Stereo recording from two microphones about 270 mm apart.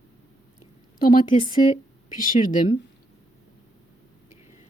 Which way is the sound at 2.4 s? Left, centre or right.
Left.